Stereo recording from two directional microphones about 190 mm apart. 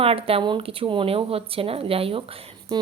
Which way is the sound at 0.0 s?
30° right (ahead or behind).